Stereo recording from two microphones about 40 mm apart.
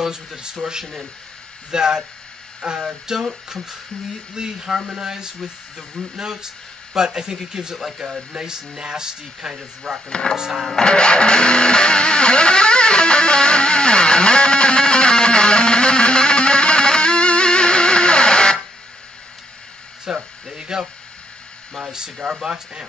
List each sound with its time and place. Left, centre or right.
0.0 s speech: centre
4.4 s speech: centre
10.0 s speech: left
10.3 s speech: centre
10.8 s music: left
20.1 s a sound: centre
21.8 s speech: right